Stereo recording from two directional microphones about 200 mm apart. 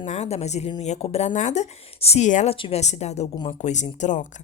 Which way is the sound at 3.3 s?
20° left (ahead or behind).